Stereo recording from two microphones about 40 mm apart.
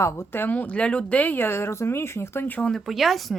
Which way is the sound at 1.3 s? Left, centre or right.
Left.